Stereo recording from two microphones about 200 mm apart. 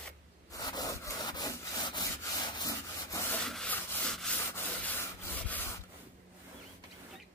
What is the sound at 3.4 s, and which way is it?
Rub, 5° left (ahead or behind).